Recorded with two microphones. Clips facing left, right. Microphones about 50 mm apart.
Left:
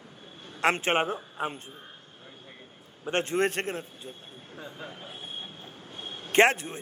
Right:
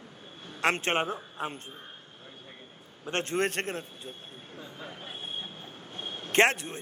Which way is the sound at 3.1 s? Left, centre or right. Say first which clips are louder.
Left 3 dB; centre.